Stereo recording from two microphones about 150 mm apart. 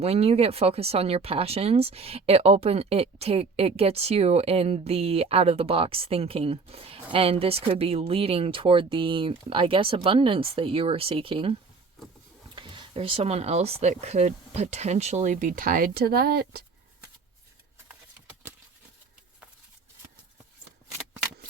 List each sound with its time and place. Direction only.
0.0 s speech: 45° right (ahead or behind)
12.5 s speech: 35° right (ahead or behind); by 16.6 s 90° right